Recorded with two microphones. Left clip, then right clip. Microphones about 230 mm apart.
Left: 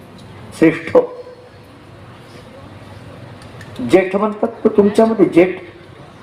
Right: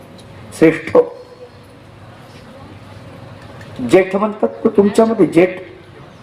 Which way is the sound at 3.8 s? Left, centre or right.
Right.